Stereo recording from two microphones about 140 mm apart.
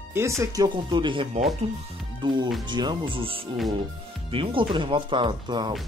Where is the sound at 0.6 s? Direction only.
35° right (ahead or behind).